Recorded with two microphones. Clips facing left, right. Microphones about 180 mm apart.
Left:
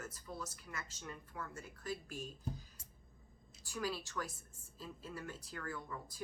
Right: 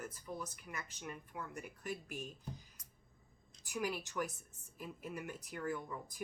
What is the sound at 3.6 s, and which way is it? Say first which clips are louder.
A woman's voice: right 1 dB; 20° right (ahead or behind).